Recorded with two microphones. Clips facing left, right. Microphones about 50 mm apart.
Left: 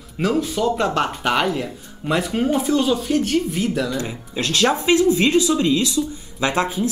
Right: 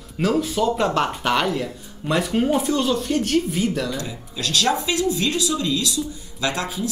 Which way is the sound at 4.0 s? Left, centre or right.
Left.